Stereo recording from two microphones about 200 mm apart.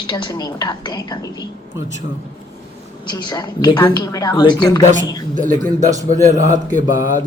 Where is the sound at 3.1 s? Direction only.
20° left (ahead or behind).